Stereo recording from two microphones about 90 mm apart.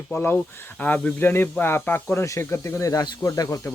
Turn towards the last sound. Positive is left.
turn(degrees=35)  # may be behind; listen again after turning